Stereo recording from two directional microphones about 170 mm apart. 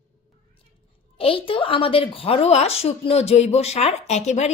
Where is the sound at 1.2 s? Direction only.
30° left (ahead or behind).